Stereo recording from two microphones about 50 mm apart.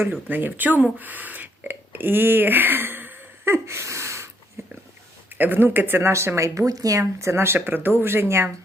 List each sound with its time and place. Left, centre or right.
0.0 s speech: right
3.4 s breathing: right
4.6 s a sound: right
5.3 s speech: right
7.2 s speech: right